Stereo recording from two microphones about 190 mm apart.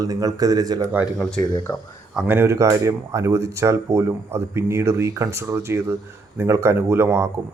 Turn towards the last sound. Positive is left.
turn(degrees=-10)  # may be behind; listen again after turning